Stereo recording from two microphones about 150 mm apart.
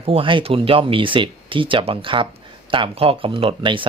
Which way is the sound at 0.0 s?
35° right (ahead or behind).